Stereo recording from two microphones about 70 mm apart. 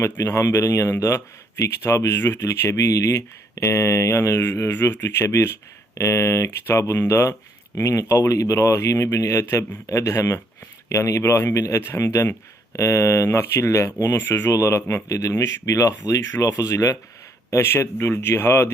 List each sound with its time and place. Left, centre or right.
0.0 s speech: left
17.5 s speech: left